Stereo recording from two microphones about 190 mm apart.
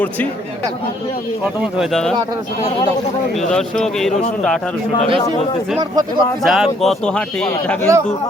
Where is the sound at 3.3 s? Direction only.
Centre (ahead or behind).